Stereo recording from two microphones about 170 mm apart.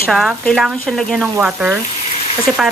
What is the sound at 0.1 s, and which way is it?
Speech, centre (ahead or behind).